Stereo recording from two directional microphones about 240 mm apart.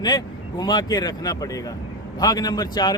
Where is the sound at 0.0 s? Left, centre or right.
Centre.